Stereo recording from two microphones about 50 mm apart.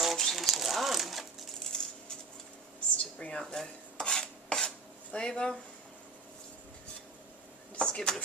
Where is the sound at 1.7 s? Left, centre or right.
Centre.